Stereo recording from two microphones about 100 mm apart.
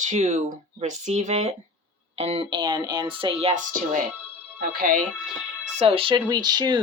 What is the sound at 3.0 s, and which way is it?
Speech, 60° right (ahead or behind).